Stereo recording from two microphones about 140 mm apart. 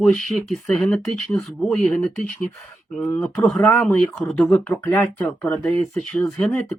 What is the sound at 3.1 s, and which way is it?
Speech, 10° left (ahead or behind).